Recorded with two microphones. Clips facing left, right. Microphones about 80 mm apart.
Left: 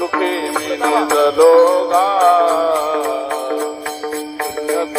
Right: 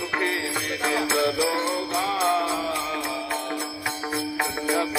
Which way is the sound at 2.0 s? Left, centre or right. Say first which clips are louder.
Left 10 dB; left.